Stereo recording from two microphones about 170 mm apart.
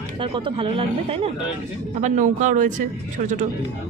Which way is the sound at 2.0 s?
45° right (ahead or behind).